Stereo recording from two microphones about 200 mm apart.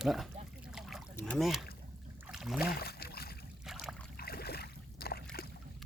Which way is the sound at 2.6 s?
50° left (ahead or behind).